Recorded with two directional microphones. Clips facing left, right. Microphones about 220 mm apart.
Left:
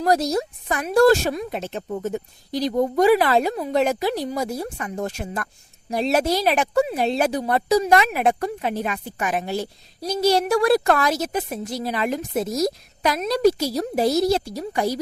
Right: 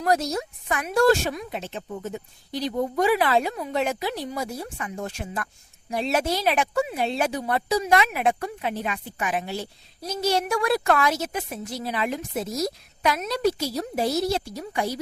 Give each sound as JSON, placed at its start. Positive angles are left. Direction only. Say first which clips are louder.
{"t": 0.0, "sound": "speech", "louder": "left 4 dB", "side_deg": 35}